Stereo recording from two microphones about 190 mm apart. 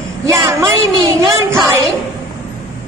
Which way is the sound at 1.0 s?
15° right (ahead or behind).